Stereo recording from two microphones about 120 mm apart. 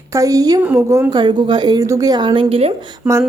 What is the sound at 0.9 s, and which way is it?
Speech, 25° right (ahead or behind).